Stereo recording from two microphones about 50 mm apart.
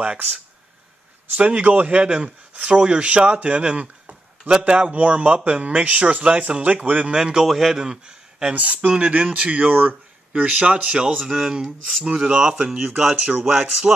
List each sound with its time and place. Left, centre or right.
1.4 s speech: right
7.4 s speech: centre
7.8 s speech: centre
10.4 s speech: centre